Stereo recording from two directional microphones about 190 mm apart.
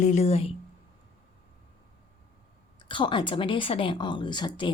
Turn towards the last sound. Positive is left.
turn(degrees=25)  # may be behind; listen again after turning